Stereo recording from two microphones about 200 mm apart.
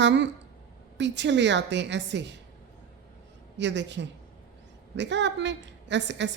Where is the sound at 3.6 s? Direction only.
60° right (ahead or behind).